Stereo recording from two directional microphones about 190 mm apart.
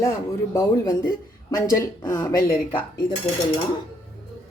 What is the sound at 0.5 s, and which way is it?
Speech, 20° left (ahead or behind).